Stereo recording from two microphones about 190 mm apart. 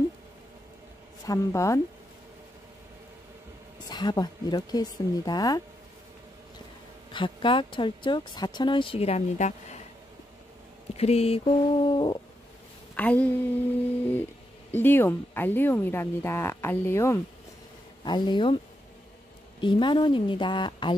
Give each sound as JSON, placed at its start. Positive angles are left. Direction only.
{"t": 1.2, "sound": "speech", "side_deg": 15}
{"t": 3.9, "sound": "speech", "side_deg": 20}
{"t": 7.1, "sound": "speech", "side_deg": 25}
{"t": 11.0, "sound": "speech", "side_deg": 35}
{"t": 12.9, "sound": "speech", "side_deg": 5}
{"t": 14.7, "sound": "speech", "side_deg": 10}
{"t": 19.6, "sound": "speech", "side_deg": 25}